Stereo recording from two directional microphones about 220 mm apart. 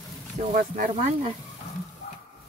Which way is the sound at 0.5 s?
35° right (ahead or behind).